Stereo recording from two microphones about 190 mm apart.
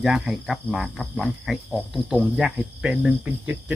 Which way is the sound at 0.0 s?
5° right (ahead or behind).